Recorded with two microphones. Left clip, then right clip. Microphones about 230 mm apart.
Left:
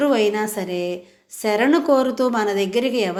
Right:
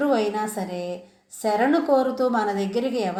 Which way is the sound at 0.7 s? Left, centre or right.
Left.